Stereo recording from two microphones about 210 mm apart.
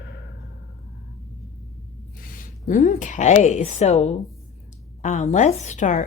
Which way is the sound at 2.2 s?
40° left (ahead or behind).